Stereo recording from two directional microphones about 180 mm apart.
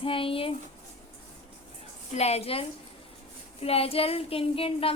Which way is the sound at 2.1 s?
35° left (ahead or behind).